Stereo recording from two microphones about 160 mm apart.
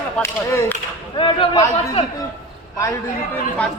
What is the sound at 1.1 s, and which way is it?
Speech, 30° left (ahead or behind).